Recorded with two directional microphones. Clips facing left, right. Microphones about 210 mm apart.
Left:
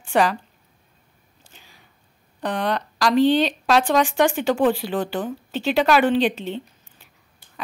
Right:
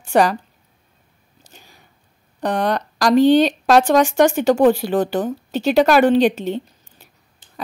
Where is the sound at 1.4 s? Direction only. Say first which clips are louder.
Right 4 dB; 45° right (ahead or behind).